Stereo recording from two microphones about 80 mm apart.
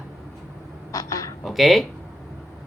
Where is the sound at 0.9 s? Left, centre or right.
Left.